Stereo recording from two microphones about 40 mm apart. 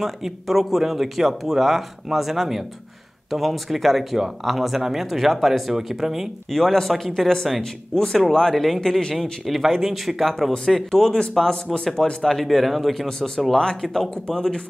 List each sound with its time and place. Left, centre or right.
0.0 s speech: centre
6.5 s speech: centre
6.9 s speech: centre
7.9 s speech: centre
13.6 s speech: centre
13.8 s speech: centre